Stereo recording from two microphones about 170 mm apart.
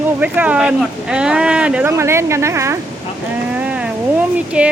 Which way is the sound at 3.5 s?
10° right (ahead or behind).